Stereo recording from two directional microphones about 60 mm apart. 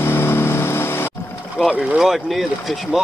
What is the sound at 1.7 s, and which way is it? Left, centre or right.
Boat, centre.